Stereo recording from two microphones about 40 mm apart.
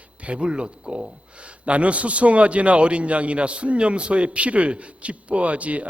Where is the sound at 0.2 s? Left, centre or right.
Right.